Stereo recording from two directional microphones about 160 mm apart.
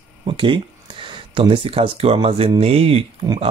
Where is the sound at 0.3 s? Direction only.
30° right (ahead or behind).